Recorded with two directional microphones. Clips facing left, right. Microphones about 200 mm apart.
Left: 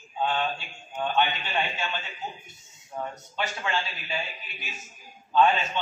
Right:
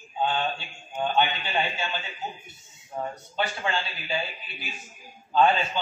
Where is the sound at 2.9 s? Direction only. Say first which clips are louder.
Right 2 dB; 25° right (ahead or behind).